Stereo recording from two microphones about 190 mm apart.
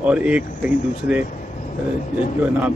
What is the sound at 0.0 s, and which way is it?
Speech, 5° right (ahead or behind).